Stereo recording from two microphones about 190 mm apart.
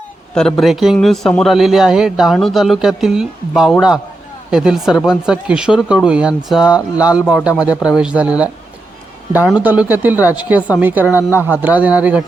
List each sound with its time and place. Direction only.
0.3 s a man's voice: centre (ahead or behind)
6.7 s speech: 20° left (ahead or behind)
7.3 s a woman's voice: 5° right (ahead or behind)